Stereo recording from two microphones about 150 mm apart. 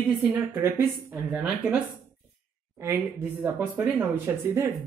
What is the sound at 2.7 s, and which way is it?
Speech, 20° right (ahead or behind).